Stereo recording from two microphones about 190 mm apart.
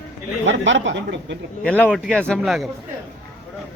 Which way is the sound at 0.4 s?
80° right.